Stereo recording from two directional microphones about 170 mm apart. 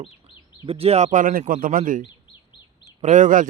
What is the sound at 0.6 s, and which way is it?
A man's voice, 35° right (ahead or behind).